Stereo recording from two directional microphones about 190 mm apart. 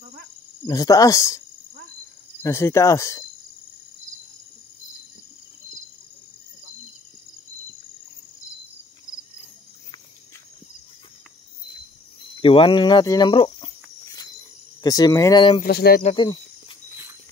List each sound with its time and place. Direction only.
0.0 s cricket: 50° right (ahead or behind)
0.7 s speech: 20° left (ahead or behind)
2.4 s speech: 15° left (ahead or behind)
12.4 s speech: 30° left (ahead or behind)
14.8 s speech: 20° left (ahead or behind)
15.6 s speech: 55° left (ahead or behind)
16.2 s cricket: 25° left (ahead or behind)